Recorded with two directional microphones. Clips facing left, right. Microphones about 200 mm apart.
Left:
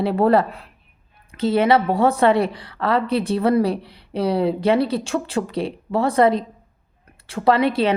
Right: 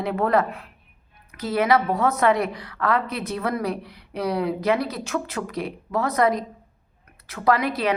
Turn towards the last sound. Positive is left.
turn(degrees=30)  # may be behind; listen again after turning